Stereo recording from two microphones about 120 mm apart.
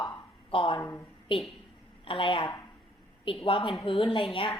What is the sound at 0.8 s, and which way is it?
Speech, 25° left (ahead or behind).